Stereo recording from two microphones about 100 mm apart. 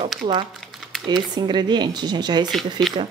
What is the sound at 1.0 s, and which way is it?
Speech, 45° right (ahead or behind).